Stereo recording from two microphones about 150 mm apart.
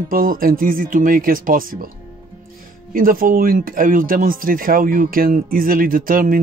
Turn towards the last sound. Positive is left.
turn(degrees=-70)  # may be behind; listen again after turning